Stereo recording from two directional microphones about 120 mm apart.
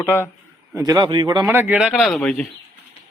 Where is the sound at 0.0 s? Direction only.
20° left (ahead or behind).